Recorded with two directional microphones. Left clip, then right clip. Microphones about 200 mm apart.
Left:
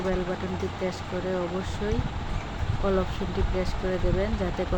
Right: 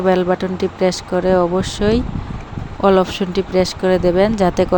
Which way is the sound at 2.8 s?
50° right (ahead or behind).